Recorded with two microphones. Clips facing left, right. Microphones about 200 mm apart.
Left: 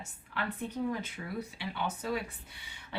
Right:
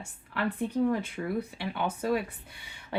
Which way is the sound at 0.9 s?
55° right (ahead or behind).